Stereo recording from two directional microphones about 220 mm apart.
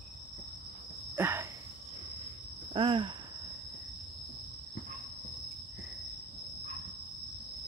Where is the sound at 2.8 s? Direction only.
20° right (ahead or behind).